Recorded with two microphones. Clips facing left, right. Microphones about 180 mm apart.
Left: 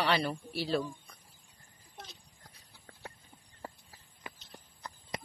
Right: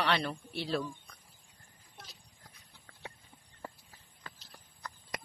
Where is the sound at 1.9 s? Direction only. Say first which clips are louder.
Left 4 dB; centre (ahead or behind).